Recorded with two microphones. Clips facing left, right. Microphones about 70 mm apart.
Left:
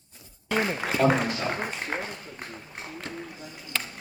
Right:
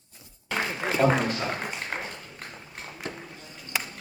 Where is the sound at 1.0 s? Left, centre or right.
Centre.